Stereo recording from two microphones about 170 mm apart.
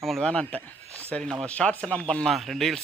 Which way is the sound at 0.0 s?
Centre (ahead or behind).